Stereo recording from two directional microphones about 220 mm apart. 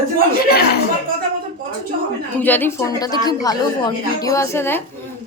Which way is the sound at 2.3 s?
10° left (ahead or behind).